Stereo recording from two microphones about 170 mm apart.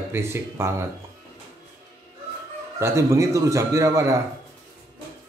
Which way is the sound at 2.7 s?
15° right (ahead or behind).